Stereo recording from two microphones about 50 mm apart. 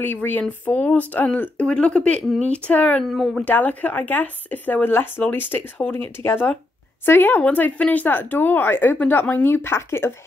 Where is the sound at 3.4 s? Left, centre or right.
Left.